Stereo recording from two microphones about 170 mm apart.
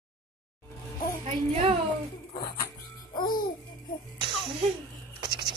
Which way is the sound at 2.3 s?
20° left (ahead or behind).